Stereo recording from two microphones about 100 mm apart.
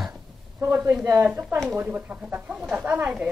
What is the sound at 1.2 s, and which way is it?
Speech, 15° right (ahead or behind).